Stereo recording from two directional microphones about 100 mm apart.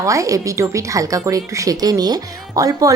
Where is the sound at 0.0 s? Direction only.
30° right (ahead or behind).